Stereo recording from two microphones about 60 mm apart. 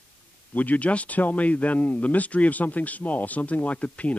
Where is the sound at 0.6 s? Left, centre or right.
Left.